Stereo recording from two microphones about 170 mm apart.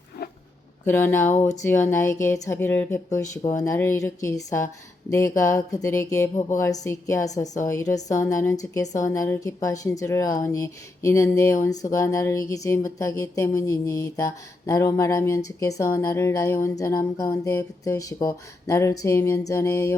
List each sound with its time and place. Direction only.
0.9 s a woman's voice: 15° left (ahead or behind)